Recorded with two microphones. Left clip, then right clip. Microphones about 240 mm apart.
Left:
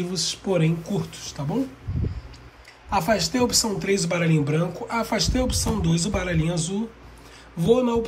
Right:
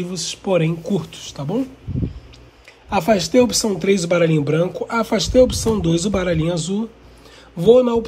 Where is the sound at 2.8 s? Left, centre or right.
Right.